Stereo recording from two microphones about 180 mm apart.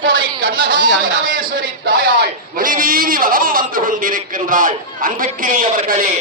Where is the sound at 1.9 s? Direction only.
60° right (ahead or behind).